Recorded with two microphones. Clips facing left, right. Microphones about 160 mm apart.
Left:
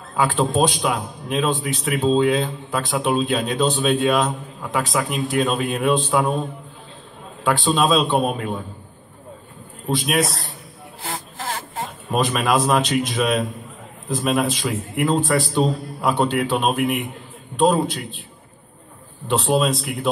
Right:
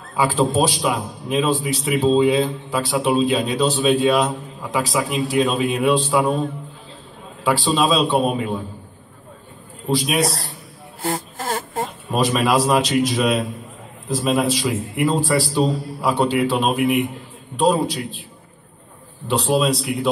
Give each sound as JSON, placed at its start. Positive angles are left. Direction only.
{"t": 0.1, "sound": "a man's voice", "side_deg": 0}
{"t": 9.8, "sound": "a man's voice", "side_deg": 0}
{"t": 11.0, "sound": "a sound", "side_deg": -45}
{"t": 12.1, "sound": "a man's voice", "side_deg": 0}
{"t": 19.2, "sound": "a man's voice", "side_deg": 0}